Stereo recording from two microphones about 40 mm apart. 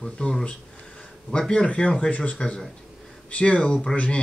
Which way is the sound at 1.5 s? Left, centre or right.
Left.